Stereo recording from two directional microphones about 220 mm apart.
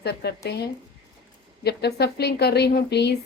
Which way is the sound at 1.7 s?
50° left (ahead or behind).